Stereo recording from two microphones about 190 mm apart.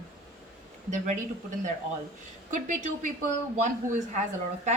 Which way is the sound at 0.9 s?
40° right (ahead or behind).